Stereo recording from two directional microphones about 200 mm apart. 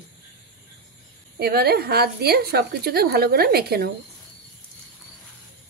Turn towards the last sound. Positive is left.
turn(degrees=-50)  # may be behind; listen again after turning